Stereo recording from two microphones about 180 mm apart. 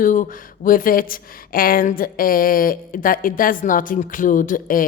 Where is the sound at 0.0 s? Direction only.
50° left (ahead or behind).